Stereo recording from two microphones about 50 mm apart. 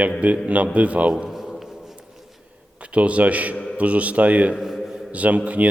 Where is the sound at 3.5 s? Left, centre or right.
Left.